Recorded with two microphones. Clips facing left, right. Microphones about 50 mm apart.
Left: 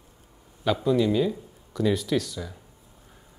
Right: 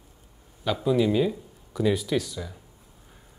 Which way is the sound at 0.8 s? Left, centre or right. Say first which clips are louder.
Right 1 dB; centre.